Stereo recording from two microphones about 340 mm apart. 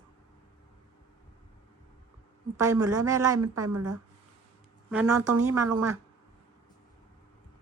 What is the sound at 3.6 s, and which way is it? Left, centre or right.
Speech, right.